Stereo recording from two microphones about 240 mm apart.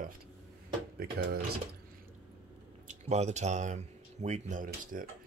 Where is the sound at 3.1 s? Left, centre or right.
Right.